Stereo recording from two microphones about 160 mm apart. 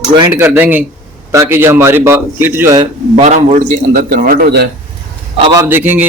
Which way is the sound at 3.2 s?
45° right (ahead or behind).